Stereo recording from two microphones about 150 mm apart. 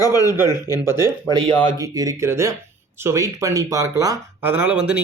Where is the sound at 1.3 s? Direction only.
25° right (ahead or behind).